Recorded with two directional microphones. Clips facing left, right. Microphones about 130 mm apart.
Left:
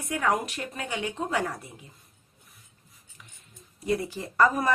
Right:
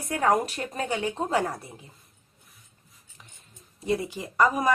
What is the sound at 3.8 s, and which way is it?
Speech, 20° right (ahead or behind).